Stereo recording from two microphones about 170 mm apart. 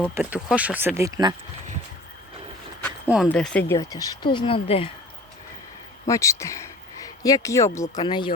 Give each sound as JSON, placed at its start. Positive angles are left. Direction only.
{"t": 0.1, "sound": "speech", "side_deg": -5}
{"t": 0.9, "sound": "speech", "side_deg": -20}
{"t": 3.2, "sound": "speech", "side_deg": 5}
{"t": 3.7, "sound": "speech", "side_deg": 20}
{"t": 6.1, "sound": "speech", "side_deg": 15}